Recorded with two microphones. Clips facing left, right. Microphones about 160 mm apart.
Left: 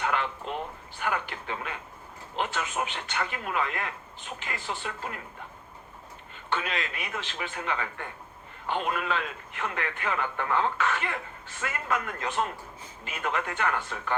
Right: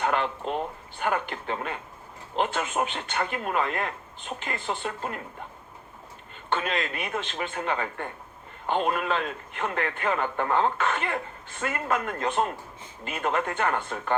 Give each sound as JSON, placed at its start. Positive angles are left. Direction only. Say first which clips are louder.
{"t": 0.0, "sound": "a sound", "louder": "right 3 dB", "side_deg": -45}
{"t": 0.9, "sound": "a man's voice", "louder": "right 3 dB", "side_deg": -45}
{"t": 6.5, "sound": "a man's voice", "louder": "right 3 dB", "side_deg": -50}